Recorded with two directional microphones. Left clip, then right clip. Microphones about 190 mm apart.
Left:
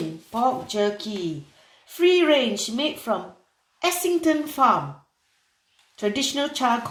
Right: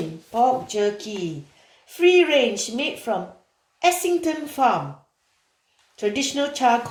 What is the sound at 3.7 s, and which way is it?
Speech, 35° left (ahead or behind).